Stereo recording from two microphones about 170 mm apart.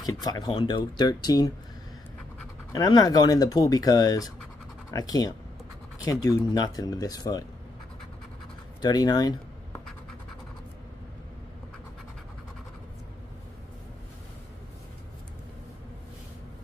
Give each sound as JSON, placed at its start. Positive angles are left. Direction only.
{"t": 0.0, "sound": "speech", "side_deg": 25}
{"t": 2.7, "sound": "speech", "side_deg": 20}
{"t": 8.8, "sound": "speech", "side_deg": 25}